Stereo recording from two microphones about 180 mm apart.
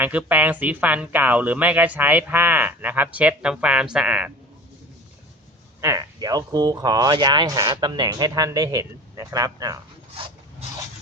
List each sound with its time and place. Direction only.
0.0 s speech: 10° right (ahead or behind)
5.8 s speech: 20° right (ahead or behind)